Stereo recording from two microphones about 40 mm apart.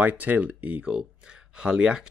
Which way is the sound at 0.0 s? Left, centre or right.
Right.